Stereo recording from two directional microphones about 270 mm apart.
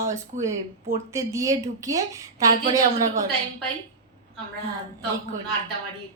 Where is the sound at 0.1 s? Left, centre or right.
Centre.